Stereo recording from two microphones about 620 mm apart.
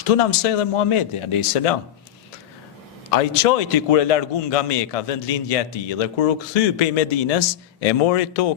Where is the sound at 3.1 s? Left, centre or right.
Left.